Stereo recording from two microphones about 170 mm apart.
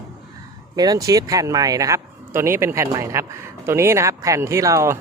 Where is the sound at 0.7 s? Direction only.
20° right (ahead or behind).